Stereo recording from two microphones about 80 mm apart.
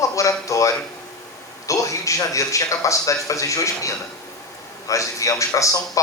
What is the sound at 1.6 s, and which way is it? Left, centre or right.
A man's voice, left.